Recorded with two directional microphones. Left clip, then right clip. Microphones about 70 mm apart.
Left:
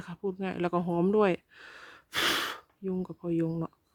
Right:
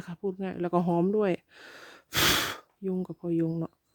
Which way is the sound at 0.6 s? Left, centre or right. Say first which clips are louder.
Even; centre.